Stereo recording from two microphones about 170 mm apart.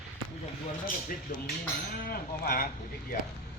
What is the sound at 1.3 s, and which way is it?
Speech, 60° left (ahead or behind).